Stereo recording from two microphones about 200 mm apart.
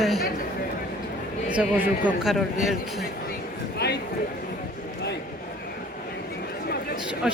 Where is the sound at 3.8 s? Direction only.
55° left (ahead or behind).